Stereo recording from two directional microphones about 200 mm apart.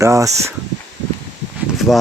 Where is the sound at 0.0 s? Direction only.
15° right (ahead or behind).